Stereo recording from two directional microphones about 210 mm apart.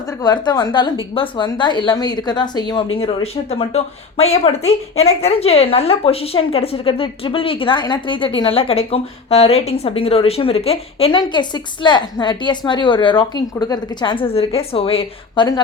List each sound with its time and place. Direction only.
0.2 s a woman's voice: 20° left (ahead or behind)